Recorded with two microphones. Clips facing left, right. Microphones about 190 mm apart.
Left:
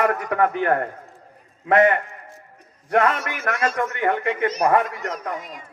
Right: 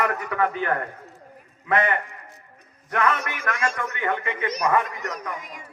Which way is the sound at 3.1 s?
40° left (ahead or behind).